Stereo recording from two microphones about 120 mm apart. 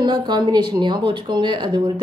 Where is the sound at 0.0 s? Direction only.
40° right (ahead or behind).